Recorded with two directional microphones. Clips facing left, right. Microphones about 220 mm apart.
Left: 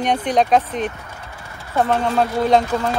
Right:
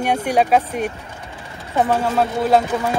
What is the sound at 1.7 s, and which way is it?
Speech, 10° right (ahead or behind).